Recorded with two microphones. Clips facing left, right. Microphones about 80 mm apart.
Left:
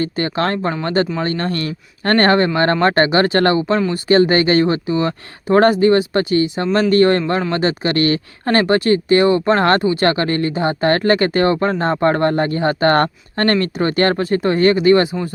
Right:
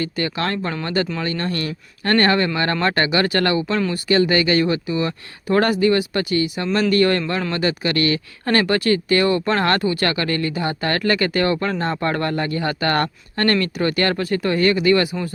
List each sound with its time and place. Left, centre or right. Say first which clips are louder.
0.0 s speech: left 4 dB; left